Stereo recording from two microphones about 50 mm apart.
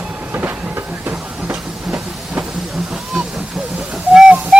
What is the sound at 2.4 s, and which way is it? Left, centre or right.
Vehicle, right.